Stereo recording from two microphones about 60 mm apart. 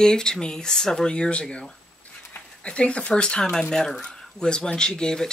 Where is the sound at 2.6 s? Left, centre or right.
Centre.